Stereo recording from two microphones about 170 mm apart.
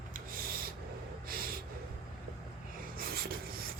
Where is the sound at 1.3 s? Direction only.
60° right (ahead or behind).